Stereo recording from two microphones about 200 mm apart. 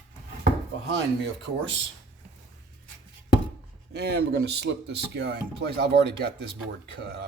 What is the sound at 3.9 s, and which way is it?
Speech, 55° right (ahead or behind).